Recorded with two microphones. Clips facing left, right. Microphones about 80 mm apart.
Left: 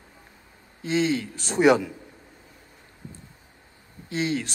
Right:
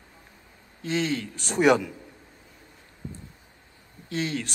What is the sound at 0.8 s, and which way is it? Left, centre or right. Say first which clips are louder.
A man's voice: left 3 dB; centre.